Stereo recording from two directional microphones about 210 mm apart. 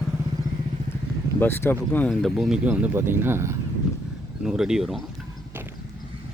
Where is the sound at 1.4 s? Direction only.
10° left (ahead or behind).